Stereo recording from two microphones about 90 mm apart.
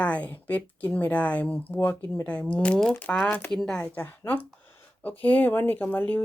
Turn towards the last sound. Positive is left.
turn(degrees=20)  # may be behind; listen again after turning